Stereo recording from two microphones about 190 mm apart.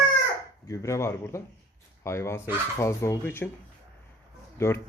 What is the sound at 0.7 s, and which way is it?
Speech, 15° left (ahead or behind).